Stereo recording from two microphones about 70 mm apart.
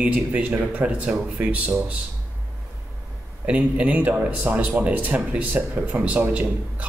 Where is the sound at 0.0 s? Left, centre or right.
Right.